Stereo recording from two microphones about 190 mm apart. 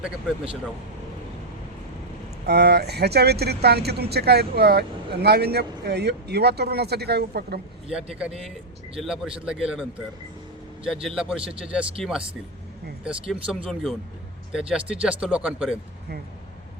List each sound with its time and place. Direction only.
2.5 s speech: 60° right (ahead or behind)
7.9 s speech: 5° right (ahead or behind)
11.0 s speech: 5° right (ahead or behind)
13.1 s speech: 5° right (ahead or behind)